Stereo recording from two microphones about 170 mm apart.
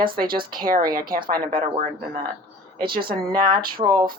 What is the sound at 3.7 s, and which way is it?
Speech, 25° right (ahead or behind).